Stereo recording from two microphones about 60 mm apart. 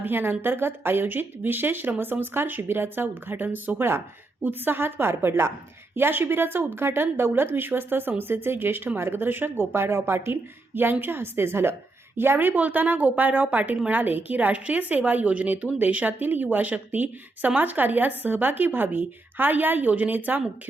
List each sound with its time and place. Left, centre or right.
0.0 s speech: right
5.9 s a woman's voice: right